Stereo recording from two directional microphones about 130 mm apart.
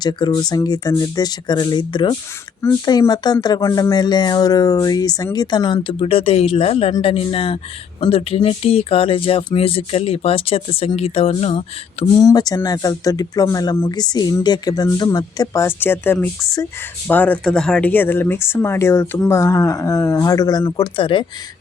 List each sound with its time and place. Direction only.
0.0 s speech: 30° left (ahead or behind); by 12.0 s 50° left (ahead or behind)
12.2 s speech: 30° left (ahead or behind)